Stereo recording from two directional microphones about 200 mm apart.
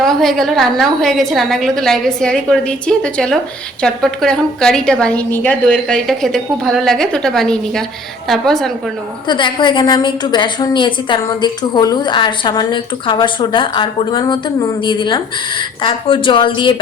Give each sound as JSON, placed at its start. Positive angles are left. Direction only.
{"t": 0.0, "sound": "a woman's voice", "side_deg": 0}
{"t": 9.2, "sound": "a woman's voice", "side_deg": 25}